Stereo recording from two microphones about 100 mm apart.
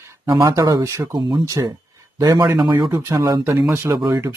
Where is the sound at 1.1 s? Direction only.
50° right (ahead or behind).